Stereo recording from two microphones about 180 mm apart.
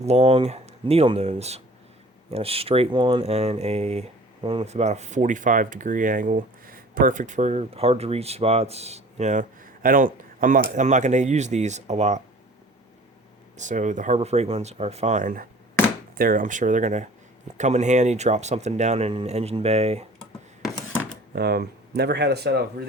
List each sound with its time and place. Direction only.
0.0 s speech: 35° right (ahead or behind)
13.6 s speech: 45° right (ahead or behind)
21.3 s speech: 65° right (ahead or behind)